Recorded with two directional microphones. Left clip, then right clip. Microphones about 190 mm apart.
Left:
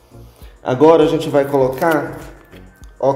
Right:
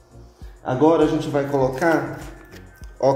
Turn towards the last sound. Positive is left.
turn(degrees=0)  # may be behind; listen again after turning